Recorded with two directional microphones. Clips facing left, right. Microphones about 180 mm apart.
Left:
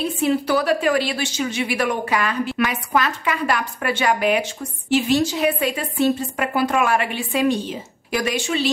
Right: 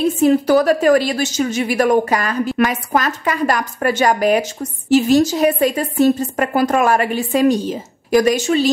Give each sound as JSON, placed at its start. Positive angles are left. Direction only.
{"t": 0.0, "sound": "a woman's voice", "side_deg": -45}